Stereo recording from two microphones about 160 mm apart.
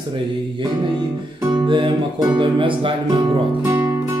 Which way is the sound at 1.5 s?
30° right (ahead or behind).